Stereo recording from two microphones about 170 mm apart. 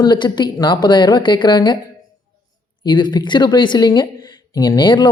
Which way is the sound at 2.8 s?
25° left (ahead or behind).